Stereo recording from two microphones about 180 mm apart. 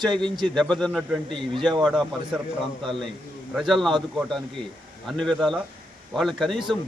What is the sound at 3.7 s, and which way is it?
Speech, centre (ahead or behind).